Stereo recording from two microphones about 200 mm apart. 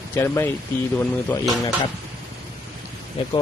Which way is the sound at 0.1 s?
10° left (ahead or behind).